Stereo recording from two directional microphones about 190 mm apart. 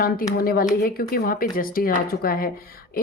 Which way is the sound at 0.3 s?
50° left (ahead or behind).